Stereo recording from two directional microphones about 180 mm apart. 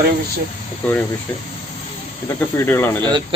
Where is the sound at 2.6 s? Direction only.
15° left (ahead or behind).